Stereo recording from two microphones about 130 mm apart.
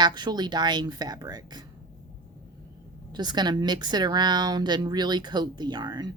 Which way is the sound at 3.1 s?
35° right (ahead or behind).